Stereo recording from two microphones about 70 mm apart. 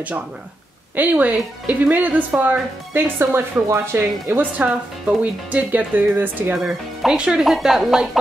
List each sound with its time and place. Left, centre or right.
0.9 s speech: right
2.9 s speech: right
6.6 s a woman's voice: centre